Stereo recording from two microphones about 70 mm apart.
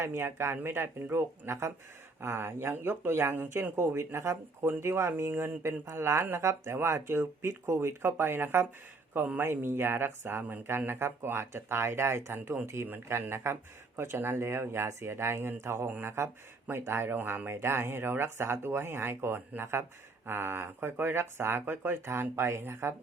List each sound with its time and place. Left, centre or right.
0.0 s speech: right